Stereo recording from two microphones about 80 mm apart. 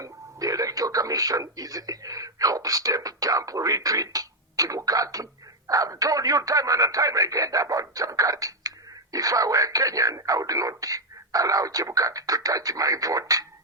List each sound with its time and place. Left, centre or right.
0.0 s speech: right